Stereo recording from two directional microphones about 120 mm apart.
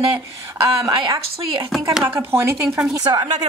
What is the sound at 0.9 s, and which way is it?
Speech, 45° right (ahead or behind).